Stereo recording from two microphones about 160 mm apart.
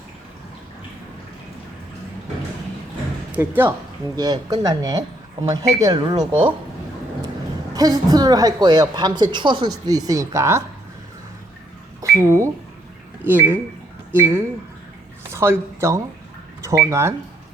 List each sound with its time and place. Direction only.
3.3 s speech: 10° right (ahead or behind)
4.1 s a woman's voice: 25° right (ahead or behind)
7.7 s a woman's voice: 25° right (ahead or behind)
11.9 s speech: 20° right (ahead or behind)